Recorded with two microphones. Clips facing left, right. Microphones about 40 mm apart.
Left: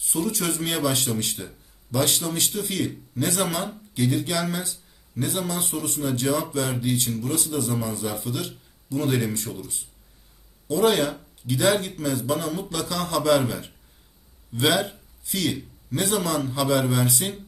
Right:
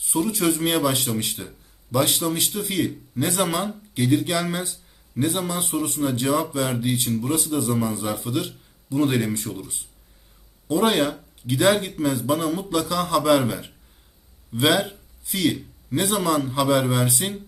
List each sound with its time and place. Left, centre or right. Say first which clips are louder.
0.0 s speech: right 4 dB; centre